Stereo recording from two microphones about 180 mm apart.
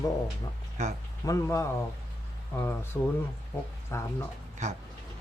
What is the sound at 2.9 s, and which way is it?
Speech, 10° left (ahead or behind).